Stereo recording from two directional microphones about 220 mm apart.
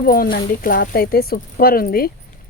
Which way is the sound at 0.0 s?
40° left (ahead or behind).